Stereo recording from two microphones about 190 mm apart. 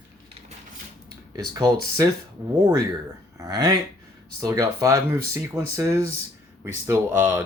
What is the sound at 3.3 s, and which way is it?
Speech, 20° right (ahead or behind).